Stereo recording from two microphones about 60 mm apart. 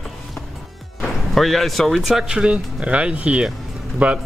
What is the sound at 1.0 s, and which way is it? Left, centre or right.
Speech, centre.